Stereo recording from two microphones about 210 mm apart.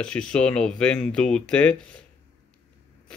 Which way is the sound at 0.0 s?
5° left (ahead or behind).